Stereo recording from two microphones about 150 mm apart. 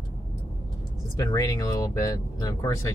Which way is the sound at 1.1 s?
25° left (ahead or behind).